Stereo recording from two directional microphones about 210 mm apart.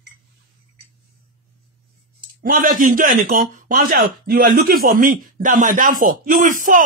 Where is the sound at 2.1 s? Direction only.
40° right (ahead or behind).